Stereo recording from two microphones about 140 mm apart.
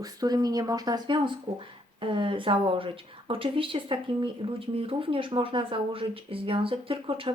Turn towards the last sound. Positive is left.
turn(degrees=-40)  # may be behind; listen again after turning